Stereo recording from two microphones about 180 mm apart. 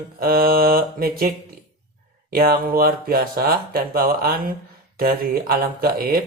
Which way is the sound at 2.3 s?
55° right (ahead or behind).